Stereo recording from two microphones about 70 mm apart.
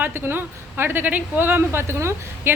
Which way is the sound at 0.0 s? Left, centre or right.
Right.